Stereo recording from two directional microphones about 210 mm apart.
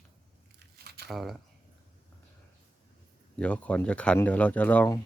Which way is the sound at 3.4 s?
5° left (ahead or behind).